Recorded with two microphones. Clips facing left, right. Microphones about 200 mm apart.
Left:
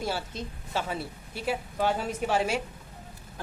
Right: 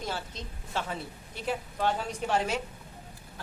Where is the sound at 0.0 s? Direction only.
10° left (ahead or behind).